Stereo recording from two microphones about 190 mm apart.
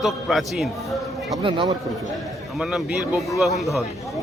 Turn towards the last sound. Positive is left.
turn(degrees=0)  # may be behind; listen again after turning